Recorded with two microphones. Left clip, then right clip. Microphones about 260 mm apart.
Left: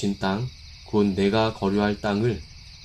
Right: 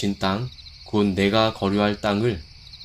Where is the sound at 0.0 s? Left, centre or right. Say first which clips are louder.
Right 2 dB; right.